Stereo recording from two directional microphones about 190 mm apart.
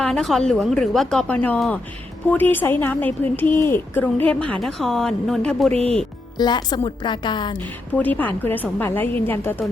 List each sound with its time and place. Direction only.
0.0 s a woman's voice: centre (ahead or behind)
5.7 s speech: 30° right (ahead or behind)
6.3 s a woman's voice: 20° left (ahead or behind)
7.9 s a woman's voice: 10° left (ahead or behind)